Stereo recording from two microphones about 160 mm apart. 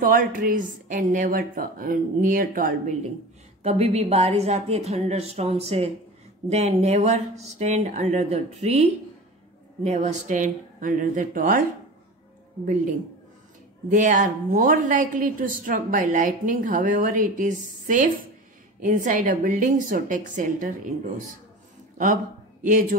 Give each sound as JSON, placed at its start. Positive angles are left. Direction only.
{"t": 0.0, "sound": "a woman's voice", "side_deg": -60}
{"t": 3.6, "sound": "a woman's voice", "side_deg": -45}
{"t": 13.8, "sound": "a woman's voice", "side_deg": -55}
{"t": 21.9, "sound": "speech", "side_deg": -55}